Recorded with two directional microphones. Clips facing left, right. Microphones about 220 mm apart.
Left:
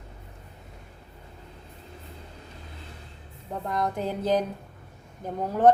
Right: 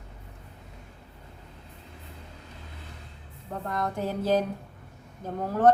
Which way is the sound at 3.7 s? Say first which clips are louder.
Left 2 dB; 15° left (ahead or behind).